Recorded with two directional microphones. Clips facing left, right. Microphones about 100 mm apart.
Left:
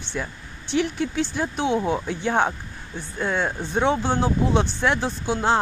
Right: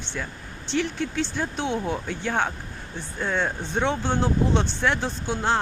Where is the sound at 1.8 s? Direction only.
25° left (ahead or behind).